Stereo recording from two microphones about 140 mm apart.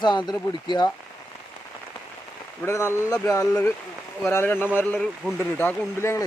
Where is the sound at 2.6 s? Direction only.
20° left (ahead or behind).